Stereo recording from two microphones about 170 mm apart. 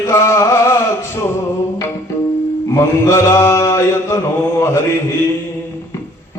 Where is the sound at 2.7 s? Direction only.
15° left (ahead or behind).